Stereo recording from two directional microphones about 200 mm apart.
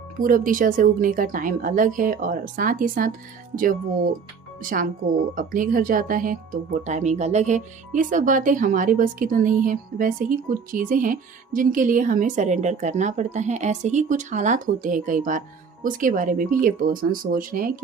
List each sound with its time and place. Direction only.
0.2 s a woman's voice: 40° right (ahead or behind)